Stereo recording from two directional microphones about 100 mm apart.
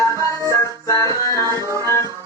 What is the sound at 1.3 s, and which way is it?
Music, 35° right (ahead or behind).